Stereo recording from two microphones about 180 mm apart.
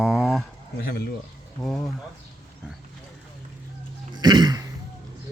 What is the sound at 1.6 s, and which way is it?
Speech, centre (ahead or behind).